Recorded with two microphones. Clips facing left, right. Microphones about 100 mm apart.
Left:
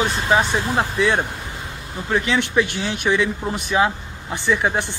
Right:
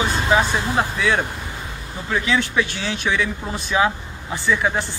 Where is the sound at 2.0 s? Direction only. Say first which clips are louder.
Left 1 dB; 25° left (ahead or behind).